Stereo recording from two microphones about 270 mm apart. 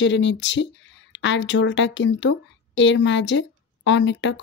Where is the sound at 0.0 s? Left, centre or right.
Left.